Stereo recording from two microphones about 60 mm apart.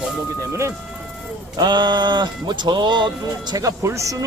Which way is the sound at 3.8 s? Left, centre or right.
Right.